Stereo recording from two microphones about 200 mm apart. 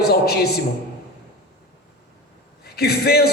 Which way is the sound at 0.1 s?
55° left (ahead or behind).